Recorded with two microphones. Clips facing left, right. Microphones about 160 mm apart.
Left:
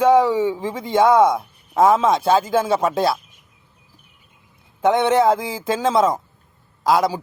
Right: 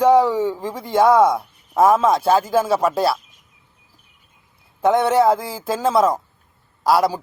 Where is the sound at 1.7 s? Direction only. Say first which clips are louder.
Even; 10° right (ahead or behind).